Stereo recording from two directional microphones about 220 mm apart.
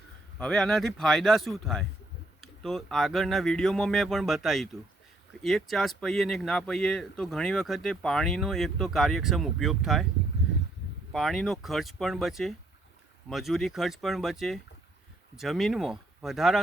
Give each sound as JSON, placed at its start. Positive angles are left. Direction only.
{"t": 0.3, "sound": "speech", "side_deg": 5}
{"t": 11.1, "sound": "speech", "side_deg": 0}